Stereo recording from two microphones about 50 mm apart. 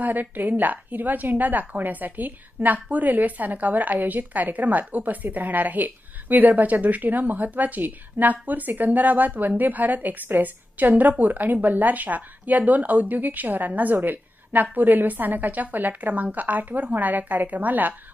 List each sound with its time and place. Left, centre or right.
0.0 s a woman's voice: right